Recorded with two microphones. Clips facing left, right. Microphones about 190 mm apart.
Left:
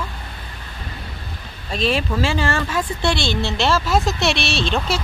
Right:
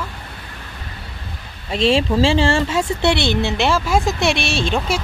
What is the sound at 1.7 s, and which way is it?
Speech, 25° right (ahead or behind).